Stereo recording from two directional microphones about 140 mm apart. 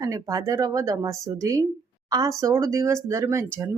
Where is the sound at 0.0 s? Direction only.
25° right (ahead or behind).